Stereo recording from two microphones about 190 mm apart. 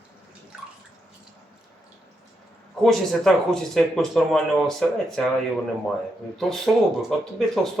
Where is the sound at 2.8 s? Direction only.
Centre (ahead or behind).